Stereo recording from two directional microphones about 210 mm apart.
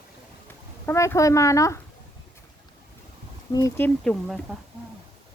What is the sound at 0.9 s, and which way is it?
Speech, 15° left (ahead or behind).